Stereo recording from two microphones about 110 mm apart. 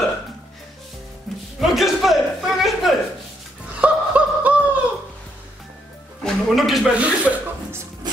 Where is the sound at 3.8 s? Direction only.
10° right (ahead or behind).